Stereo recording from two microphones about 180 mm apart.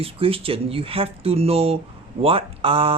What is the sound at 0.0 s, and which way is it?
Speech, 30° right (ahead or behind).